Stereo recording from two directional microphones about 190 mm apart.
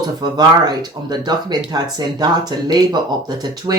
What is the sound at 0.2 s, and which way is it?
Speech, 20° right (ahead or behind).